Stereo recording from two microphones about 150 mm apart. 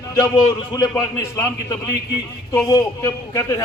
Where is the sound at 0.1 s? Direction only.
20° left (ahead or behind).